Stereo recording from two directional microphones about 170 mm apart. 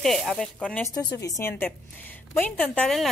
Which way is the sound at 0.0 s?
Centre (ahead or behind).